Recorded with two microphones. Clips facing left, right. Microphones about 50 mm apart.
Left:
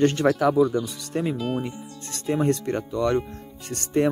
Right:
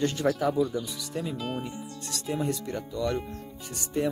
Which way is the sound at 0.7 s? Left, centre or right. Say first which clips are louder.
Left 6 dB; left.